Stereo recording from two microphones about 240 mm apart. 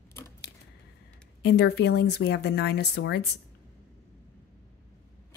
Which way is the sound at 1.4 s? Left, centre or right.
Left.